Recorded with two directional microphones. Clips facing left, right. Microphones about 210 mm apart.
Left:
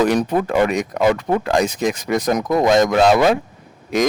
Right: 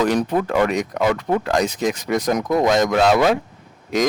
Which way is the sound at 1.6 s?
50° left (ahead or behind).